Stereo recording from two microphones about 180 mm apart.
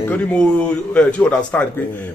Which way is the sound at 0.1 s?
5° left (ahead or behind).